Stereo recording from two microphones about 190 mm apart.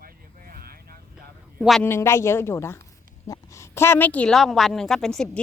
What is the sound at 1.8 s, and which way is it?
A woman's voice, 15° left (ahead or behind).